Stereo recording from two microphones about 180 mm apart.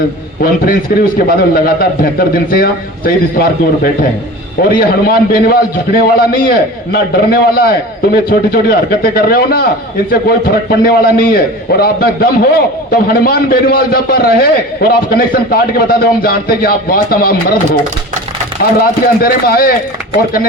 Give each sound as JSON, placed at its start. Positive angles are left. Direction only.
{"t": 0.4, "sound": "a man's voice", "side_deg": 55}
{"t": 19.0, "sound": "a man's voice", "side_deg": 55}